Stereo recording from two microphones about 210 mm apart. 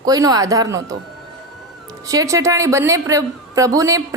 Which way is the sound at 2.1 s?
15° right (ahead or behind).